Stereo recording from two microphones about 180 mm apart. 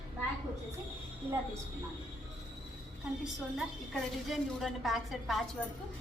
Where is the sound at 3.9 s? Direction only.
Centre (ahead or behind).